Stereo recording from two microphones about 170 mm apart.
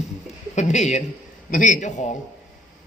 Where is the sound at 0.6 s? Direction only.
45° left (ahead or behind).